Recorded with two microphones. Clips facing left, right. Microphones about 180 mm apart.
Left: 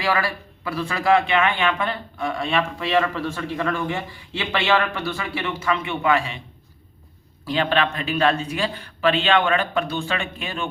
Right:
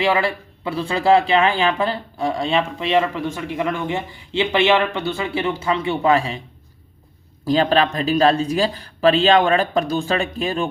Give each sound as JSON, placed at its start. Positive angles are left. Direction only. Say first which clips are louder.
{"t": 0.0, "sound": "speech", "louder": "right 4 dB", "side_deg": -25}
{"t": 7.4, "sound": "speech", "louder": "right 5 dB", "side_deg": -40}